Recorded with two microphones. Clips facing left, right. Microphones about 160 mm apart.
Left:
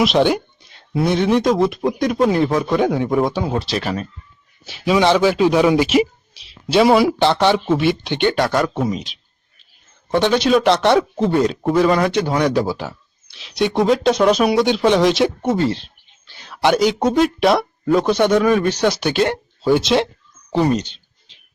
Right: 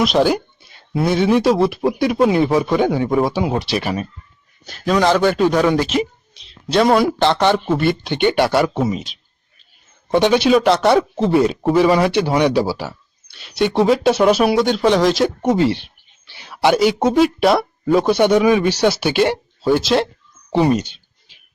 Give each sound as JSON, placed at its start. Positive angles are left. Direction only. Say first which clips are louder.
{"t": 0.0, "sound": "speech", "louder": "even", "side_deg": 0}
{"t": 4.6, "sound": "speech", "louder": "left 1 dB", "side_deg": 5}
{"t": 10.1, "sound": "speech", "louder": "right 2 dB", "side_deg": -15}
{"t": 16.3, "sound": "speech", "louder": "right 1 dB", "side_deg": -10}
{"t": 20.5, "sound": "a sound", "louder": "right 2 dB", "side_deg": -10}